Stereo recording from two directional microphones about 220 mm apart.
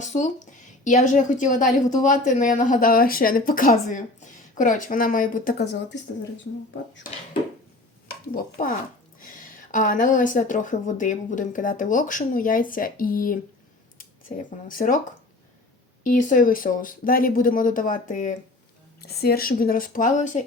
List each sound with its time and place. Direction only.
0.0 s a woman's voice: 35° left (ahead or behind); by 6.0 s 50° left (ahead or behind)
7.1 s a woman's voice: 35° left (ahead or behind)
8.3 s a woman's voice: 40° left (ahead or behind)
16.0 s a woman's voice: 35° left (ahead or behind)